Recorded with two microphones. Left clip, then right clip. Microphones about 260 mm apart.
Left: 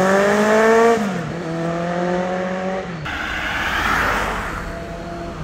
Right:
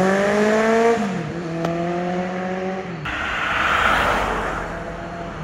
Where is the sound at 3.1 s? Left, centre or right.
Centre.